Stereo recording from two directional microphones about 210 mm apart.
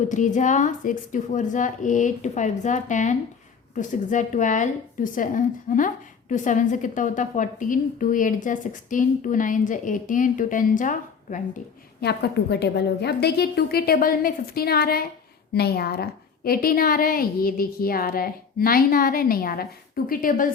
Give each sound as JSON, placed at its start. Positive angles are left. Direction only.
{"t": 0.1, "sound": "a woman's voice", "side_deg": 35}
{"t": 11.9, "sound": "a woman's voice", "side_deg": 50}